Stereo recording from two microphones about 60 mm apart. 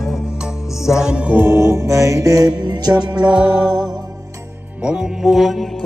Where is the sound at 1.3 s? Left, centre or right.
Right.